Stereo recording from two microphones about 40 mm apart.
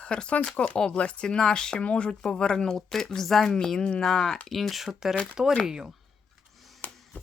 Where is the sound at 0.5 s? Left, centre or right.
Left.